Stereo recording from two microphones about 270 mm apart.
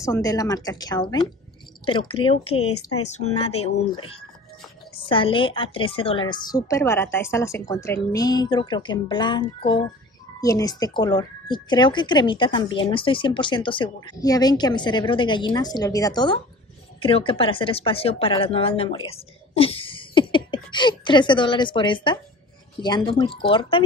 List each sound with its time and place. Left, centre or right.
0.0 s speech: centre
2.6 s speech: left
3.1 s speech: left